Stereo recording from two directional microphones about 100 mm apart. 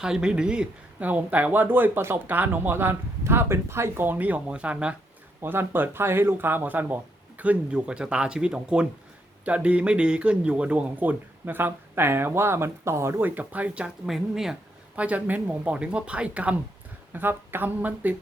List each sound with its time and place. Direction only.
0.0 s speech: 10° right (ahead or behind)